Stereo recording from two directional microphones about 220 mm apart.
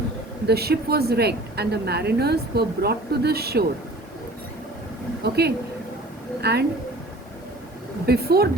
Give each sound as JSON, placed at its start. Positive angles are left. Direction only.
{"t": 0.4, "sound": "a woman's voice", "side_deg": -45}
{"t": 5.2, "sound": "a woman's voice", "side_deg": -45}
{"t": 6.4, "sound": "a woman's voice", "side_deg": -50}
{"t": 8.0, "sound": "a woman's voice", "side_deg": -45}